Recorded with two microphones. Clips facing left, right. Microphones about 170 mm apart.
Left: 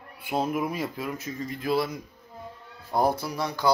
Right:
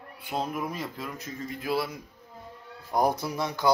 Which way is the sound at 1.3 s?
5° right (ahead or behind).